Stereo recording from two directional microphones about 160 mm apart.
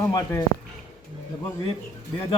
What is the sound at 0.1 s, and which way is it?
Speech, 25° left (ahead or behind).